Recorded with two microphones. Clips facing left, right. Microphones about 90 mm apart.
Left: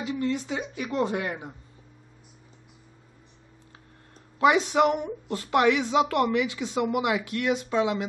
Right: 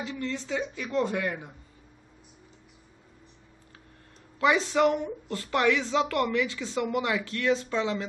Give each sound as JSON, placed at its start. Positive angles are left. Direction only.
{"t": 0.0, "sound": "a woman's voice", "side_deg": 15}
{"t": 4.4, "sound": "speech", "side_deg": 20}